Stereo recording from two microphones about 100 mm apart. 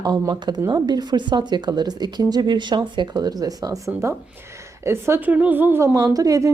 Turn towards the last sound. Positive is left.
turn(degrees=-35)  # may be behind; listen again after turning